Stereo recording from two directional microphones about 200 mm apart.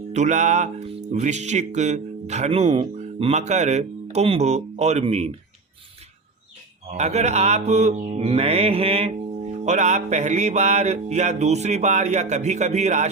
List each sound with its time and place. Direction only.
0.1 s speech: 35° right (ahead or behind)
6.9 s speech: 35° right (ahead or behind)